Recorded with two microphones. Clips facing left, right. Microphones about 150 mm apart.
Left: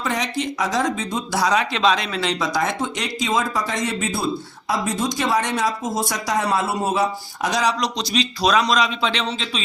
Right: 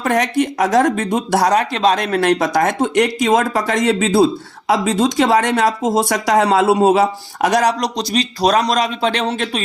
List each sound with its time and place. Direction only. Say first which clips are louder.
0.0 s speech: right 8 dB; 55° right (ahead or behind)